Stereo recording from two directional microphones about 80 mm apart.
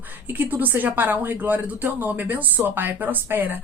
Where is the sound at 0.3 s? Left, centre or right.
Right.